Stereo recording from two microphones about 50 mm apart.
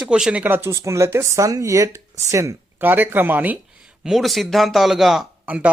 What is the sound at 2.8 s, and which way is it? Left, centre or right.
Speech, right.